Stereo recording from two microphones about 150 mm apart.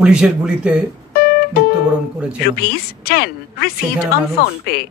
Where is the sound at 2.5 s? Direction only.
90° left.